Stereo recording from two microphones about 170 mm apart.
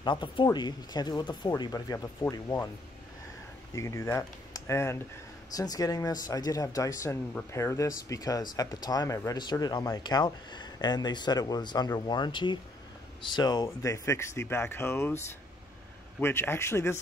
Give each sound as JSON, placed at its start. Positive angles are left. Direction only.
{"t": 0.0, "sound": "speech", "side_deg": 30}
{"t": 3.7, "sound": "speech", "side_deg": 15}